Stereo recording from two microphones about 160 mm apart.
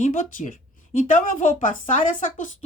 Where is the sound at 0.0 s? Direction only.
55° left (ahead or behind).